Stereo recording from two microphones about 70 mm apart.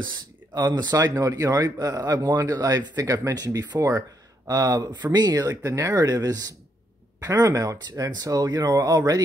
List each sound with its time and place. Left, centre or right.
0.6 s speech: right
1.1 s speech: right
4.5 s speech: right
5.6 s speech: right
5.9 s speech: right
7.2 s speech: right
8.1 s speech: right